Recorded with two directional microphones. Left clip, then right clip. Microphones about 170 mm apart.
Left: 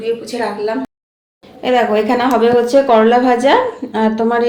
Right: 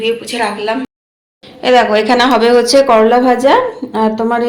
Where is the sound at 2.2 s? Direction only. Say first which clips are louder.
Right 2 dB; 20° right (ahead or behind).